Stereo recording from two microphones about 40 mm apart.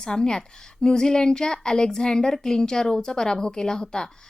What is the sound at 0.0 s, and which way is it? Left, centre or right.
A woman's voice, centre.